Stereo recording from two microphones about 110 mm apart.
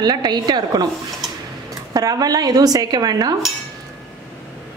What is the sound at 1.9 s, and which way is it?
A woman's voice, 35° right (ahead or behind).